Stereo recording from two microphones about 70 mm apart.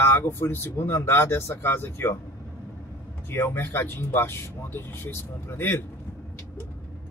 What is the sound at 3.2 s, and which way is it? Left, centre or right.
Speech, left.